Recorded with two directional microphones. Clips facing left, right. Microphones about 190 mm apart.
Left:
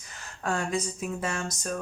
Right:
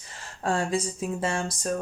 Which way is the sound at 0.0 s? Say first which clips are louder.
Right 3 dB; 30° right (ahead or behind).